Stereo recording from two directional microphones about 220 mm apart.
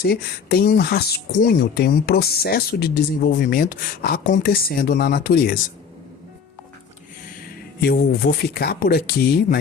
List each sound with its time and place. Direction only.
0.0 s speech: 45° left (ahead or behind)
7.8 s speech: 45° left (ahead or behind)